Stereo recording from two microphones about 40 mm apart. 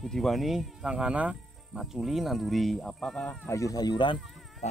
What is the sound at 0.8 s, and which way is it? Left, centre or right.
Insect, centre.